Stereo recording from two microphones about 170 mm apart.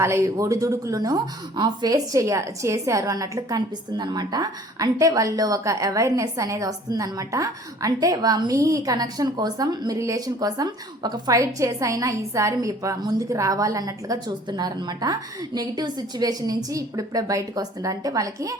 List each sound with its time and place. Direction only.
0.0 s speech: 15° right (ahead or behind)